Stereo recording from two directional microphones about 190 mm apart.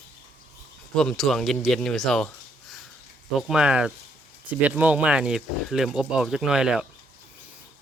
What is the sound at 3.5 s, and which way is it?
Speech, 5° right (ahead or behind).